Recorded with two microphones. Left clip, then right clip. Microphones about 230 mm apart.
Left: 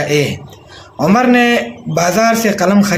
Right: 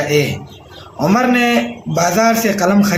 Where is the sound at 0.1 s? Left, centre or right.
Left.